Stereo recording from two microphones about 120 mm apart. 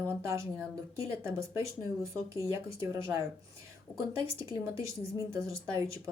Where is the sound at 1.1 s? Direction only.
25° right (ahead or behind).